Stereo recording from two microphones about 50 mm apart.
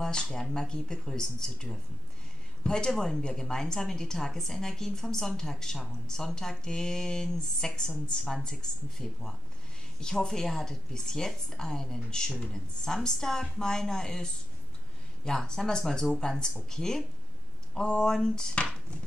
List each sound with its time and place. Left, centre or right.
0.0 s speech: centre